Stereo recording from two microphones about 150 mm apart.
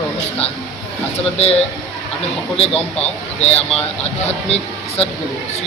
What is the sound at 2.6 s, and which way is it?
A man's voice, 45° left (ahead or behind).